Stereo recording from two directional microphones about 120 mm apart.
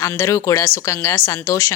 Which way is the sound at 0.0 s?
25° left (ahead or behind).